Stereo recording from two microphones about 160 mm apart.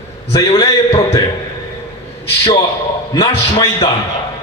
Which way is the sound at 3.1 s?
25° left (ahead or behind).